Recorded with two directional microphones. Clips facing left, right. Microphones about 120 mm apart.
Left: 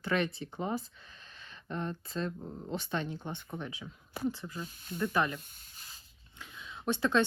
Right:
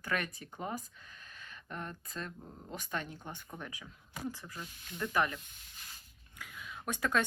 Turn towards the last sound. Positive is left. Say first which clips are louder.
# left 5 dB
turn(degrees=25)  # may be behind; listen again after turning